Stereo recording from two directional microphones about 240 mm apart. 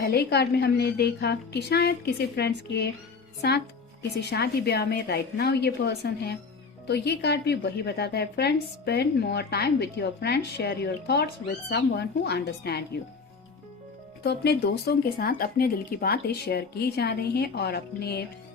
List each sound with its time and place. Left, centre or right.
0.0 s a woman's voice: left
14.3 s speech: left